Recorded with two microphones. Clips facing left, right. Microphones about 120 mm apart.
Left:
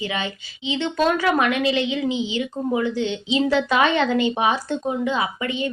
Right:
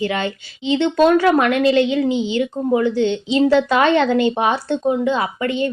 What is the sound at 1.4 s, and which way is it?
A woman's voice, 40° right (ahead or behind).